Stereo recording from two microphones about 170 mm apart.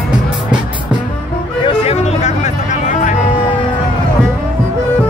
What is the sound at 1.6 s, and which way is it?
Music, 35° left (ahead or behind).